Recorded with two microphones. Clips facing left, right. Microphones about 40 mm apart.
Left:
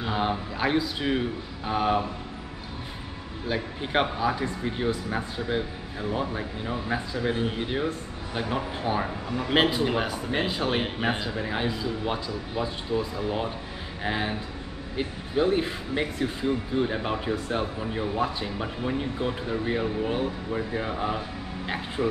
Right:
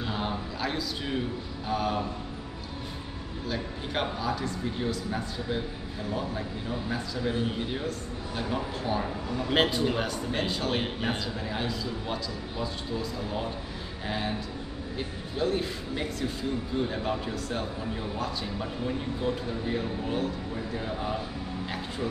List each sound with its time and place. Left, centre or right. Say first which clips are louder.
0.0 s a sound: left 5 dB; left
1.7 s speech: left 4 dB; left
3.4 s speech: left 4 dB; left
9.6 s speech: left 3 dB; centre; by 22.0 s left